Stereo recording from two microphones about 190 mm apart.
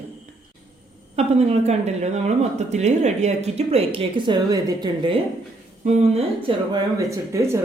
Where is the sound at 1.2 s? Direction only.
35° right (ahead or behind).